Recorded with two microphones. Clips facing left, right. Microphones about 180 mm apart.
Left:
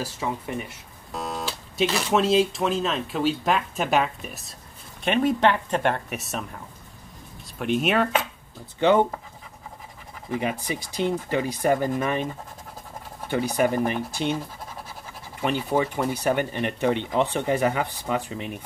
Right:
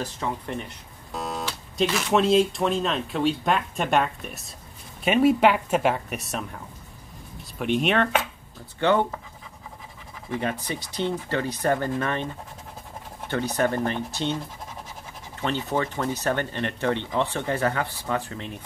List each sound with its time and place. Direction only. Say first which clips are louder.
0.0 s guitar: left 1 dB; 10° left (ahead or behind)
2.0 s speech: right 1 dB; centre (ahead or behind)
8.7 s speech: left 3 dB; 15° left (ahead or behind)
10.3 s speech: left 1 dB; 10° left (ahead or behind)
13.3 s speech: left 2 dB; 10° left (ahead or behind)